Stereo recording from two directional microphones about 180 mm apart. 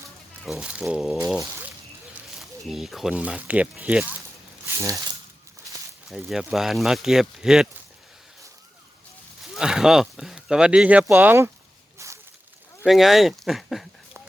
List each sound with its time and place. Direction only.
0.4 s speech: centre (ahead or behind)
2.6 s speech: centre (ahead or behind); by 5.1 s 20° right (ahead or behind)
6.1 s speech: centre (ahead or behind)
9.4 s speech: 5° right (ahead or behind)
11.9 s a sound: 15° right (ahead or behind)
12.8 s speech: centre (ahead or behind)